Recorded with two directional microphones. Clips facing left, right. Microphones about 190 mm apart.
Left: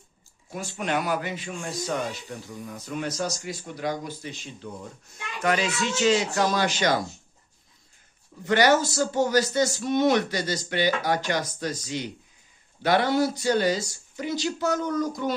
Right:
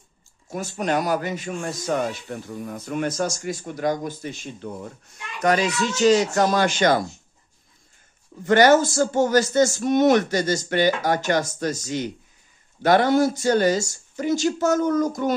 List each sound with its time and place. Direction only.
0.5 s speech: 40° right (ahead or behind)
2.5 s speech: 55° right (ahead or behind)
5.4 s speech: 40° right (ahead or behind)
8.5 s speech: 45° right (ahead or behind)